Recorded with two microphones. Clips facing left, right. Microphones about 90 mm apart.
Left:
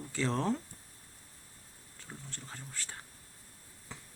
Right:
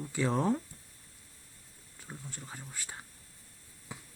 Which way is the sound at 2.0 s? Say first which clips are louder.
Right 2 dB; 10° right (ahead or behind).